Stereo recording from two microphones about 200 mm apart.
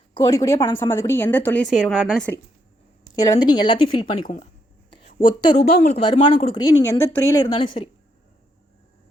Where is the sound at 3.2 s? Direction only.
25° left (ahead or behind).